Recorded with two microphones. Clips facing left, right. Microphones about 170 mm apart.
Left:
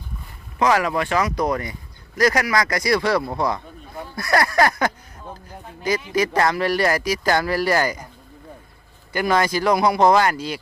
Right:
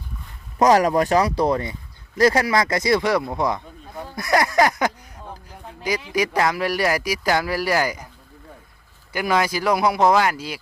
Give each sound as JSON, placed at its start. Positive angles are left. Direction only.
{"t": 0.6, "sound": "speech", "side_deg": -40}
{"t": 6.1, "sound": "speech", "side_deg": -10}
{"t": 9.1, "sound": "speech", "side_deg": -5}